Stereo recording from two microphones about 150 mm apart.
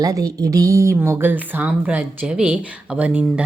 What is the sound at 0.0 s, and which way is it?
A woman's voice, 25° right (ahead or behind).